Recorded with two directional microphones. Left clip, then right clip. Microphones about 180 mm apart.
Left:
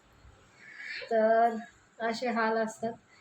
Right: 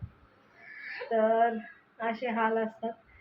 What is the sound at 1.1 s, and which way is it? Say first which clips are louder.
A woman's voice: left 1 dB; 15° left (ahead or behind).